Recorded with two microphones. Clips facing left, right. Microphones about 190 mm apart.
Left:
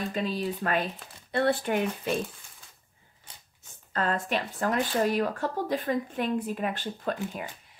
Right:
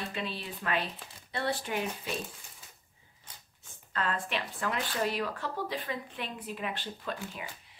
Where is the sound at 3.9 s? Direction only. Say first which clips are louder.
Left 5 dB; 40° left (ahead or behind).